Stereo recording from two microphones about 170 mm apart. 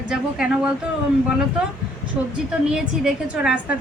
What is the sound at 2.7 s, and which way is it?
Speech, 5° right (ahead or behind).